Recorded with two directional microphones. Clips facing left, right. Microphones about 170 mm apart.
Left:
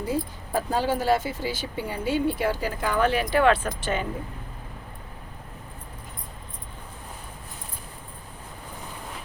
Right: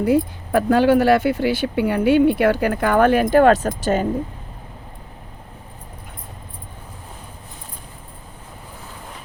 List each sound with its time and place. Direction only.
0.0 s speech: 65° right (ahead or behind); by 4.0 s 40° right (ahead or behind)